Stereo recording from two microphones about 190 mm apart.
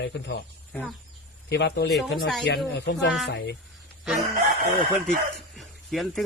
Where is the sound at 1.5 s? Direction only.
65° left (ahead or behind).